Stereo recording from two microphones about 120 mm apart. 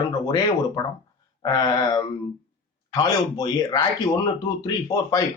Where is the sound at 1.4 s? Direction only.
35° left (ahead or behind).